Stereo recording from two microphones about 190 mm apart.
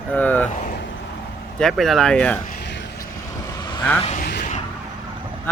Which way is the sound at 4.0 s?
35° left (ahead or behind).